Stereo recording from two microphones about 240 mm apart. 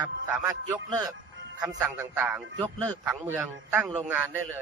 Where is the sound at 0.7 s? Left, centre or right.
Centre.